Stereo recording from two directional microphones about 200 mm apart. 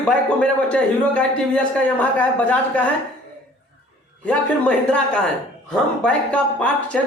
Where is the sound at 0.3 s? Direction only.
5° left (ahead or behind).